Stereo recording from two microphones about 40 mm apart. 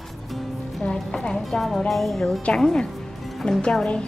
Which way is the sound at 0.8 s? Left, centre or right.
Left.